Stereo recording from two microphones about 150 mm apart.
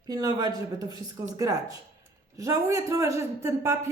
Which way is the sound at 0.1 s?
25° right (ahead or behind).